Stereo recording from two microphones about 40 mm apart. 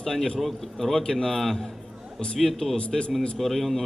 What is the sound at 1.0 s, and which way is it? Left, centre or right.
Speech, centre.